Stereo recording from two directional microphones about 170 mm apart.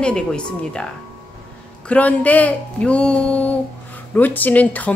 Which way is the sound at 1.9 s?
10° left (ahead or behind).